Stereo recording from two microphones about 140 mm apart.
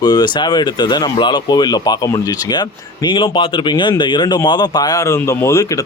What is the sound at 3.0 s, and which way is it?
Speech, 35° left (ahead or behind).